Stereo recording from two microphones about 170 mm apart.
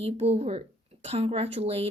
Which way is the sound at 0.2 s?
35° right (ahead or behind).